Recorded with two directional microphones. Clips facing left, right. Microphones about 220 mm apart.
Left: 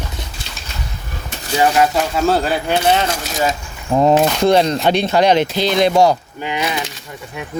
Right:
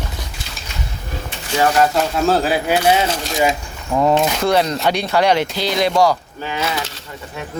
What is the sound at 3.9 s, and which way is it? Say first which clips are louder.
Speech: left 3 dB; 20° left (ahead or behind).